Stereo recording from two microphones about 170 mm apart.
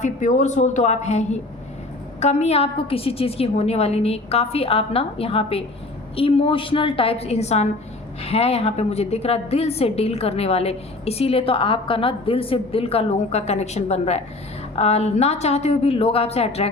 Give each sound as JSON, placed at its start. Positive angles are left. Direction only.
{"t": 0.0, "sound": "a woman's voice", "side_deg": 45}